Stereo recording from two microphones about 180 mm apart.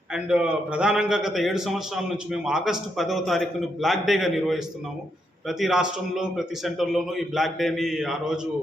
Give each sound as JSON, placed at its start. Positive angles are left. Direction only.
{"t": 0.1, "sound": "a man's voice", "side_deg": -5}